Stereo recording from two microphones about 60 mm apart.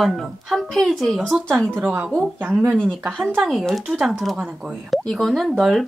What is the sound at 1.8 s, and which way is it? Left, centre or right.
Speech, right.